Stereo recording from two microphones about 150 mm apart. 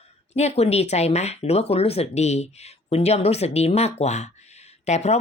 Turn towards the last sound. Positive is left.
turn(degrees=50)  # may be behind; listen again after turning